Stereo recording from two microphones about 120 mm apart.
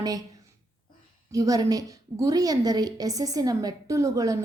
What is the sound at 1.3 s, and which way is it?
A woman's voice, 30° right (ahead or behind).